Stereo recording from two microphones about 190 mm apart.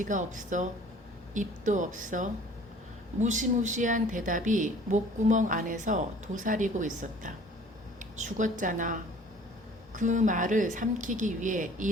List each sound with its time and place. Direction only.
0.0 s a woman's voice: 40° right (ahead or behind)